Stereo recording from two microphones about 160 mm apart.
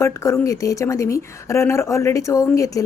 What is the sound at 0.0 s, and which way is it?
Speech, 20° left (ahead or behind).